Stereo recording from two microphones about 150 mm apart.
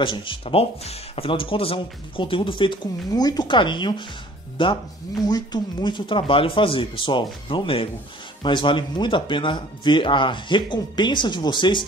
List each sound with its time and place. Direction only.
0.0 s speech: 35° left (ahead or behind)